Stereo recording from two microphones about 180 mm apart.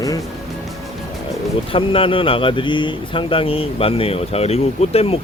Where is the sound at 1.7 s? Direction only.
30° left (ahead or behind).